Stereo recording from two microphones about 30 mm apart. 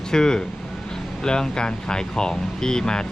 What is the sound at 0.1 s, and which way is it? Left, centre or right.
Speech, left.